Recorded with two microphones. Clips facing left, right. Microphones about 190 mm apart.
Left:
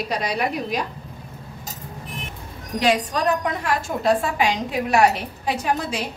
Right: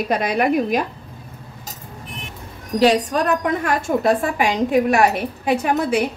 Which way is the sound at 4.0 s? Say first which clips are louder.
Right 2 dB; 50° right (ahead or behind).